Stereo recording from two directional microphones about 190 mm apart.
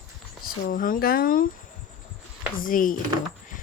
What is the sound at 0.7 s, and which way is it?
Speech, 45° left (ahead or behind).